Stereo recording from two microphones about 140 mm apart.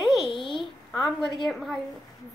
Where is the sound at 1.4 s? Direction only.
Centre (ahead or behind).